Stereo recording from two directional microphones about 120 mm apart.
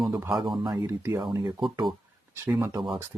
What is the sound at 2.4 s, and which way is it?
Speech, 20° right (ahead or behind).